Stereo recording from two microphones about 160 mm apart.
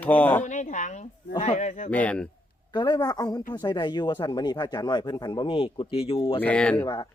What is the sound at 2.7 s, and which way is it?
A man's voice, 25° left (ahead or behind).